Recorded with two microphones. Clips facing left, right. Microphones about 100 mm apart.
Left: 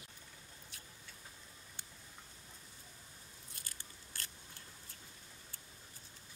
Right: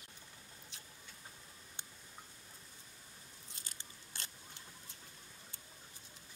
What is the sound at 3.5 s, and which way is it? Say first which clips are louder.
Biting: even; 20° right (ahead or behind).